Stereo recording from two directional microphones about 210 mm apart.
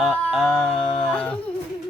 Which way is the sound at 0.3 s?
5° left (ahead or behind).